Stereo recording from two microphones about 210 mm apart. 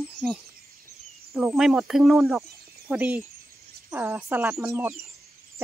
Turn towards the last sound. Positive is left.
turn(degrees=-10)  # may be behind; listen again after turning